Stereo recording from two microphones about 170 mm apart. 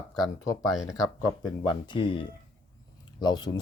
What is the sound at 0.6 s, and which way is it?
Speech, centre (ahead or behind).